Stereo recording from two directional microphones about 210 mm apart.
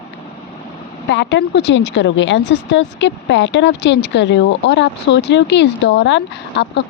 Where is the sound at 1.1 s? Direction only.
55° left (ahead or behind).